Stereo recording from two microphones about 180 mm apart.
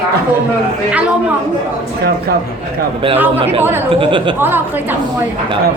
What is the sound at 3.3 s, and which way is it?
Speech, 30° right (ahead or behind).